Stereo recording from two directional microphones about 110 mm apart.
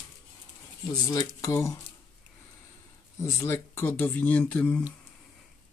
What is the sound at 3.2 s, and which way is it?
Speech, 25° left (ahead or behind).